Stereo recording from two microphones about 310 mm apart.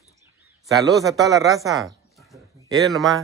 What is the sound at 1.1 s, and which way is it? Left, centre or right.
Speech, centre.